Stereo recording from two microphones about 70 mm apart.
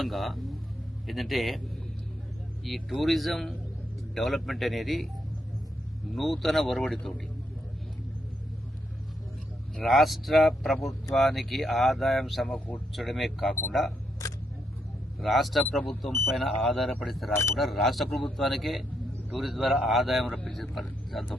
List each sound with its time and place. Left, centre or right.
0.0 s speech: centre
2.6 s speech: centre
6.1 s speech: centre
9.7 s speech: centre
12.5 s speech: centre
12.9 s speech: centre
15.2 s speech: centre